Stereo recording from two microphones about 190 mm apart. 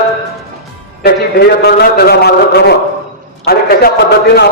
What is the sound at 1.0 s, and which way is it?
A man's voice, 55° left (ahead or behind).